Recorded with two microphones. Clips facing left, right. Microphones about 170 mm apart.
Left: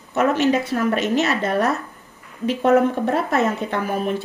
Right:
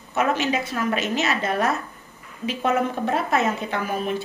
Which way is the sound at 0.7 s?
60° left (ahead or behind).